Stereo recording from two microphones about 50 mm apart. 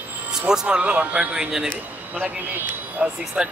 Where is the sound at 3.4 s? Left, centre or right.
Centre.